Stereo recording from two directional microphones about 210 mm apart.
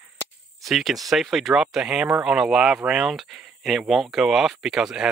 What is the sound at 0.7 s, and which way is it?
Speech, centre (ahead or behind).